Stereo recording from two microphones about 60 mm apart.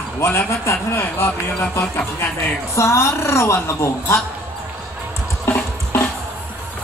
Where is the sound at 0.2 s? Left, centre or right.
Left.